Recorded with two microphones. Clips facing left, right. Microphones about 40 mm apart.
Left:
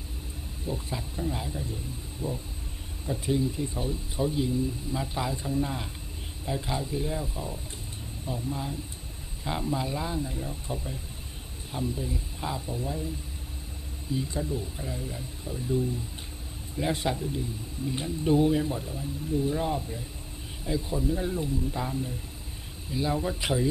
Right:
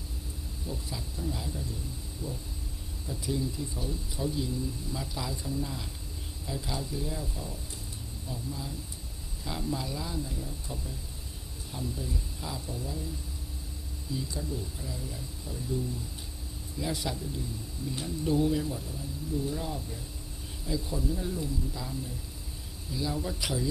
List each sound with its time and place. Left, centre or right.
0.7 s speech: left
14.1 s speech: left
16.7 s speech: left